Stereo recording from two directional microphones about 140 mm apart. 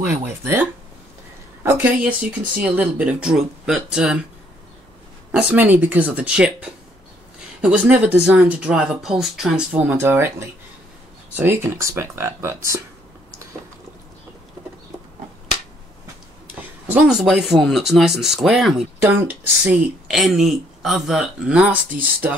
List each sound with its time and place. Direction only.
0.0 s speech: 15° right (ahead or behind)
5.3 s speech: 5° right (ahead or behind)
16.5 s speech: 10° right (ahead or behind)
18.9 s speech: 15° right (ahead or behind)
20.2 s speech: centre (ahead or behind)